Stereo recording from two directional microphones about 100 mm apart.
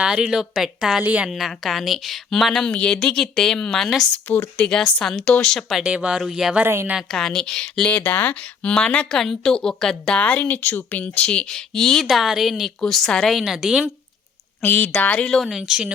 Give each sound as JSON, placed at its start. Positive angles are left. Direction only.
{"t": 0.0, "sound": "a woman's voice", "side_deg": -10}
{"t": 1.3, "sound": "a woman's voice", "side_deg": 0}
{"t": 4.3, "sound": "speech", "side_deg": 15}
{"t": 5.8, "sound": "speech", "side_deg": -10}
{"t": 6.7, "sound": "a woman's voice", "side_deg": -25}
{"t": 7.1, "sound": "speech", "side_deg": 5}
{"t": 7.9, "sound": "speech", "side_deg": 15}
{"t": 14.6, "sound": "a woman's voice", "side_deg": 15}